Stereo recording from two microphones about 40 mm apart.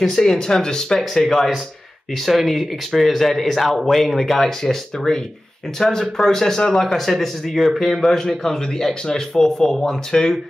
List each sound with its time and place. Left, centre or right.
0.0 s speech: centre
2.2 s speech: centre